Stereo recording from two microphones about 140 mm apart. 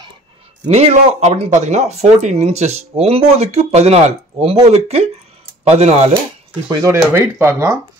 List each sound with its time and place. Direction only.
0.7 s speech: 50° right (ahead or behind)
6.7 s speech: 20° right (ahead or behind)